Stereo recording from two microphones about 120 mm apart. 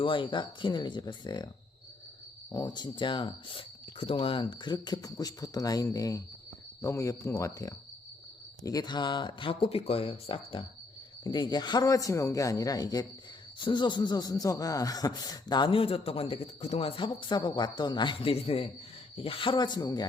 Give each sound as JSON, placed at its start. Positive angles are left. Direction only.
{"t": 0.0, "sound": "speech", "side_deg": 45}
{"t": 2.5, "sound": "speech", "side_deg": 35}